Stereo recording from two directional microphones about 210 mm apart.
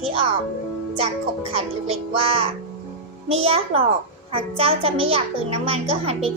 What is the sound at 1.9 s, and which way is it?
A child's voice, 30° right (ahead or behind).